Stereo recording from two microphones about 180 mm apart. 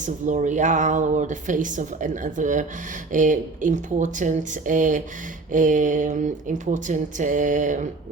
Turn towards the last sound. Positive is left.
turn(degrees=-45)  # may be behind; listen again after turning